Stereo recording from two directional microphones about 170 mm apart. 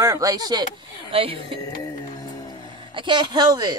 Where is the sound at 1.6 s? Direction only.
25° left (ahead or behind).